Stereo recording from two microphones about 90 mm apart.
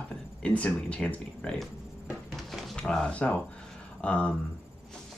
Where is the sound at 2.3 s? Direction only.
5° left (ahead or behind).